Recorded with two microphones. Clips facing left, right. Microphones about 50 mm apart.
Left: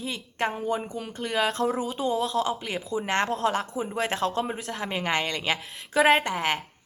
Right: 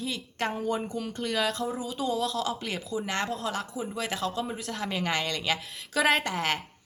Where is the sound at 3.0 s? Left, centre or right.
Left.